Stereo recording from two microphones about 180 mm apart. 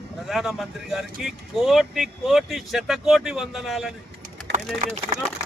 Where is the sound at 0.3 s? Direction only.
Centre (ahead or behind).